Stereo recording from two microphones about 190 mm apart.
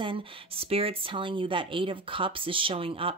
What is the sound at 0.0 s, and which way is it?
Speech, 30° right (ahead or behind).